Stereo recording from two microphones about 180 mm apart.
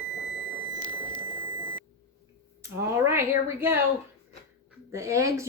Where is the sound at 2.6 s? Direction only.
15° right (ahead or behind).